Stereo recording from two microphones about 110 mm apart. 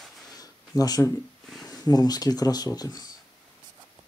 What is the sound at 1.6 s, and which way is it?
Speech, 35° left (ahead or behind).